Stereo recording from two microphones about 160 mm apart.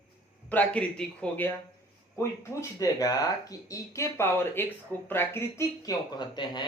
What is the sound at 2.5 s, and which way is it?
Speech, 20° left (ahead or behind).